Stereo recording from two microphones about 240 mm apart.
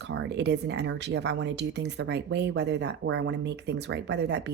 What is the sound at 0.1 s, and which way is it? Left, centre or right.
Speech, right.